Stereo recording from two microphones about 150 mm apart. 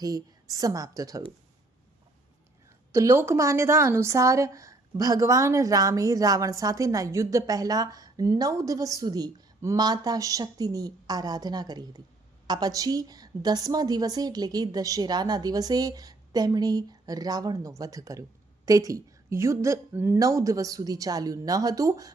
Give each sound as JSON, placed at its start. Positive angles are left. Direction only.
{"t": 0.0, "sound": "speech", "side_deg": -25}
{"t": 2.9, "sound": "a woman's voice", "side_deg": -20}